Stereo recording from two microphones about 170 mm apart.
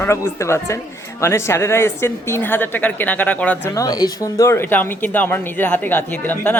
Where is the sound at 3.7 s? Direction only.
20° left (ahead or behind).